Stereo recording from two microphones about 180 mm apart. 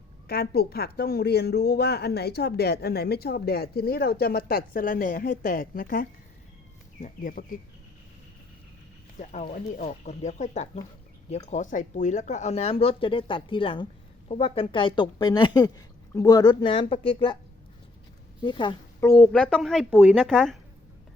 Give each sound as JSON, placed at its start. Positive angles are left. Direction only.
{"t": 0.3, "sound": "a woman's voice", "side_deg": 60}
{"t": 9.1, "sound": "speech", "side_deg": 40}
{"t": 18.4, "sound": "speech", "side_deg": 25}
{"t": 18.9, "sound": "a woman's voice", "side_deg": 10}